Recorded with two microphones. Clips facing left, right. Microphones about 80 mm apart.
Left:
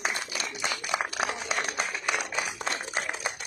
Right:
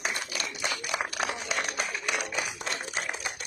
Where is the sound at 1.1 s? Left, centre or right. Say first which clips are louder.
Left 1 dB; centre.